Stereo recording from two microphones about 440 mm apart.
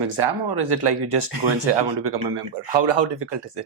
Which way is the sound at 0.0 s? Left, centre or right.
Right.